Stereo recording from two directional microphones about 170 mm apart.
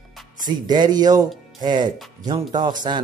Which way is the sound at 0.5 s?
25° right (ahead or behind).